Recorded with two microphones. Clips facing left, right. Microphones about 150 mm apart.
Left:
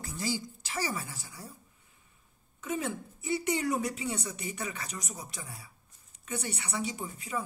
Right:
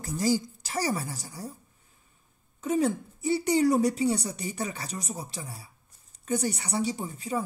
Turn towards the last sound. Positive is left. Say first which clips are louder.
# right 6 dB
turn(degrees=-35)  # may be behind; listen again after turning